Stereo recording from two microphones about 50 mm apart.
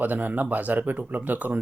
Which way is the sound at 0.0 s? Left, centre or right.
Right.